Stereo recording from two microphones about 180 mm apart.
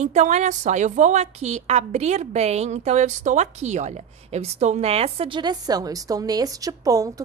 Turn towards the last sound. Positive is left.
turn(degrees=-20)  # may be behind; listen again after turning